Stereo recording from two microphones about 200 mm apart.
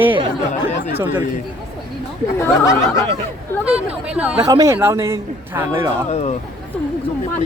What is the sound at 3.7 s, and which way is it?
Speech, 5° right (ahead or behind).